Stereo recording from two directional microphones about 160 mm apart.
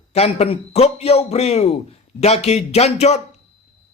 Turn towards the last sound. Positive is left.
turn(degrees=45)  # may be behind; listen again after turning